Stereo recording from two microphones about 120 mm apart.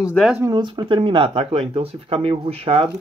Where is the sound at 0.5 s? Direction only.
45° right (ahead or behind).